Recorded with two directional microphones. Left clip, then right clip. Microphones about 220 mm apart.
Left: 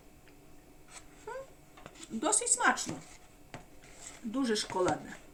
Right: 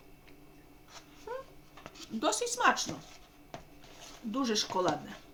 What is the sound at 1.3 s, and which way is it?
Cat, 10° right (ahead or behind).